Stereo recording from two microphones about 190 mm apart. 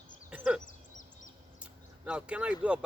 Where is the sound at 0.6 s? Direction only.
40° left (ahead or behind).